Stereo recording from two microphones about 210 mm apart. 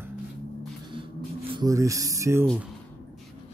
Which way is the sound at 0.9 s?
25° right (ahead or behind).